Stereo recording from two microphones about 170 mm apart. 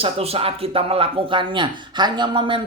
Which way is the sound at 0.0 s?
35° right (ahead or behind).